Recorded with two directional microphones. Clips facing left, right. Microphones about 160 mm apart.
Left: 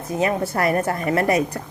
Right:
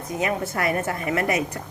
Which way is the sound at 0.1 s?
30° left (ahead or behind).